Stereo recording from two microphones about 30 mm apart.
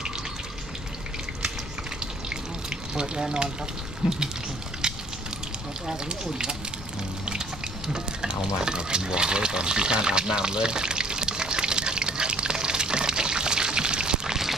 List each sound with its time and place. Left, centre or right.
2.3 s water: right
4.0 s a sound: right
4.8 s fire: right
6.1 s speech: right
7.3 s stir: right